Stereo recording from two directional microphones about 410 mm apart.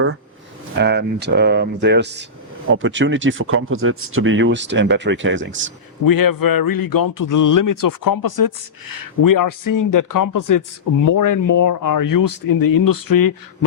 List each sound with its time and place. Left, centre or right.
0.8 s speech: right
6.1 s speech: left